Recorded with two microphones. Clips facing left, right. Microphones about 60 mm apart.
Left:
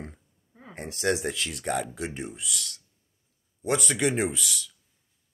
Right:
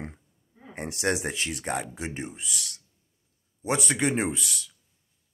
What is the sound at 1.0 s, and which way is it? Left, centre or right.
Speech, right.